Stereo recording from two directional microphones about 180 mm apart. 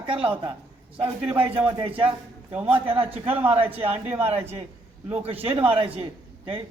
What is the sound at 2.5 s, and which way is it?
Speech, 10° right (ahead or behind).